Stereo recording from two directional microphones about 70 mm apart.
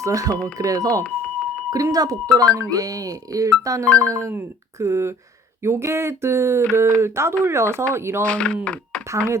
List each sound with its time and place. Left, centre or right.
0.0 s speech: right
1.0 s a sound: centre
1.7 s speech: right
8.2 s speech: centre
8.6 s a sound: centre
9.0 s speech: right